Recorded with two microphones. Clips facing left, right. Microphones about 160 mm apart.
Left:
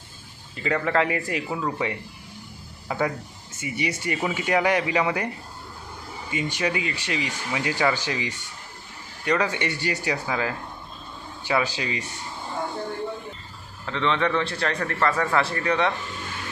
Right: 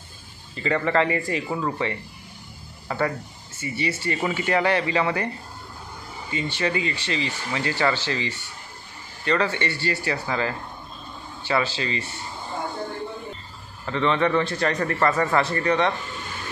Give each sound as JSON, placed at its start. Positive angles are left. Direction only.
{"t": 0.6, "sound": "a man's voice", "side_deg": 5}
{"t": 6.3, "sound": "speech", "side_deg": 10}
{"t": 10.2, "sound": "speech", "side_deg": 5}
{"t": 13.8, "sound": "a man's voice", "side_deg": -5}